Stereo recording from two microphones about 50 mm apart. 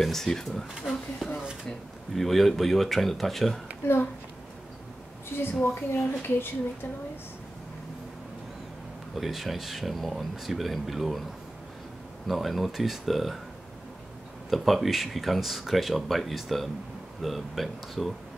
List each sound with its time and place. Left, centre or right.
0.0 s speech: centre
3.8 s speech: left
5.3 s speech: left
9.1 s speech: centre
12.3 s speech: centre
14.5 s speech: centre